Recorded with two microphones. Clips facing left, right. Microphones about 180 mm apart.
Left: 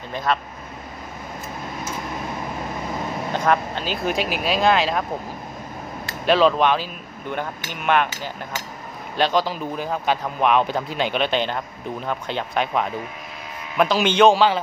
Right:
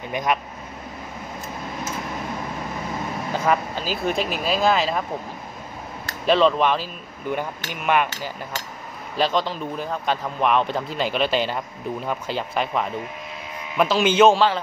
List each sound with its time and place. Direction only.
0.1 s speech: 15° right (ahead or behind)
3.3 s a man's voice: 5° right (ahead or behind)
6.2 s a man's voice: centre (ahead or behind)